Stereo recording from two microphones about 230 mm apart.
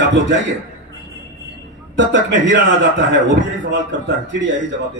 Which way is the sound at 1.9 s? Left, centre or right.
Right.